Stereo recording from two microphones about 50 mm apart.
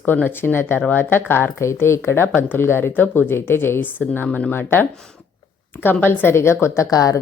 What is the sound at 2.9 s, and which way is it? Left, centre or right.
Speech, left.